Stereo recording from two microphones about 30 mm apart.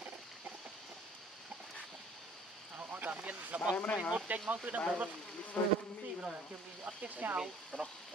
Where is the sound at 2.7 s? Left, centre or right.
Right.